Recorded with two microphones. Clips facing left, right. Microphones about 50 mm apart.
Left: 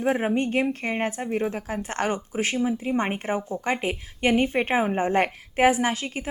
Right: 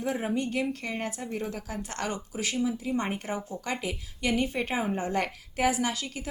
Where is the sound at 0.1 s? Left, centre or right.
Left.